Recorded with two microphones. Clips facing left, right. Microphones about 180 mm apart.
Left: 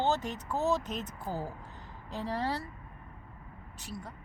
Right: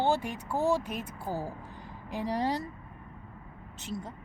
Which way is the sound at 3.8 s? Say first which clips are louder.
Right 5 dB; 20° right (ahead or behind).